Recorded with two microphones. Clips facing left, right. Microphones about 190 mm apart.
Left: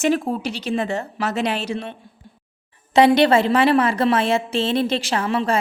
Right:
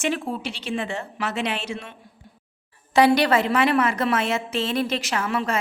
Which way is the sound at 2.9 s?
25° left (ahead or behind).